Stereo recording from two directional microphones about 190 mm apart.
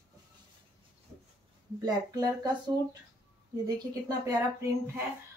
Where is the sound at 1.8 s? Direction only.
20° right (ahead or behind).